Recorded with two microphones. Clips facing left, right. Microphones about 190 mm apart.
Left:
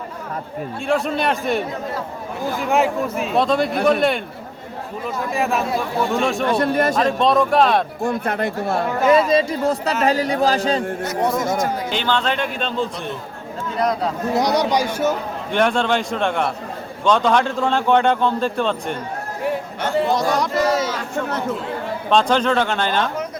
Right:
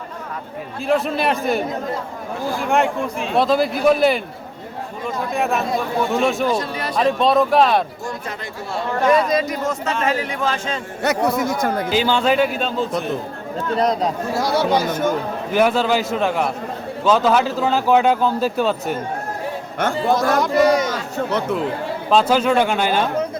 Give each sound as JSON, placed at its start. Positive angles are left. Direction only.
{"t": 0.9, "sound": "speech", "side_deg": 0}
{"t": 2.6, "sound": "speech", "side_deg": 0}
{"t": 6.5, "sound": "speech", "side_deg": 55}
{"t": 6.9, "sound": "speech", "side_deg": 0}
{"t": 8.0, "sound": "speech", "side_deg": 60}
{"t": 8.9, "sound": "speech", "side_deg": 5}
{"t": 9.3, "sound": "speech", "side_deg": 30}
{"t": 11.0, "sound": "speech", "side_deg": -65}
{"t": 11.9, "sound": "speech", "side_deg": -5}
{"t": 13.7, "sound": "speech", "side_deg": -25}
{"t": 14.3, "sound": "speech", "side_deg": 20}
{"t": 15.5, "sound": "speech", "side_deg": -5}
{"t": 20.1, "sound": "speech", "side_deg": 0}
{"t": 22.1, "sound": "speech", "side_deg": -5}